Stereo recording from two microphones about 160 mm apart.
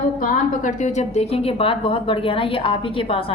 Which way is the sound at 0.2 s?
50° left (ahead or behind).